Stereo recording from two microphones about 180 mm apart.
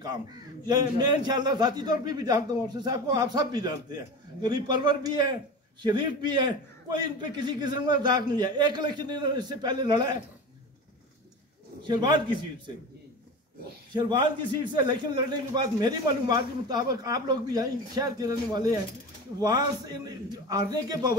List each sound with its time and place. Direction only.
0.7 s a man's voice: 25° right (ahead or behind)
11.8 s a man's voice: 25° right (ahead or behind)
13.9 s a man's voice: 25° right (ahead or behind)